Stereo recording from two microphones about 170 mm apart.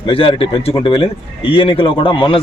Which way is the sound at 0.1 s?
35° left (ahead or behind).